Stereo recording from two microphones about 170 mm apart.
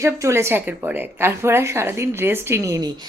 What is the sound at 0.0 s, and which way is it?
Speech, 15° right (ahead or behind).